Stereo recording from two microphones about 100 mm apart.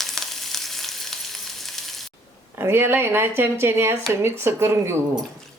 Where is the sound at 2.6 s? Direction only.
25° right (ahead or behind).